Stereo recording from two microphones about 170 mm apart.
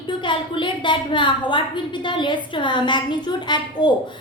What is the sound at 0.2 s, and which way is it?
A woman's voice, 30° left (ahead or behind).